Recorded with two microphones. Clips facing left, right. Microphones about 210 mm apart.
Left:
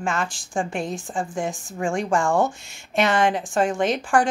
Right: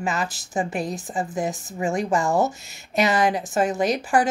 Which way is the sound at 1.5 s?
20° right (ahead or behind).